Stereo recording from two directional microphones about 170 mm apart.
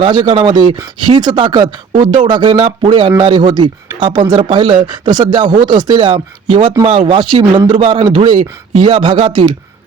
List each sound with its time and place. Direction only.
0.0 s speech: 25° right (ahead or behind)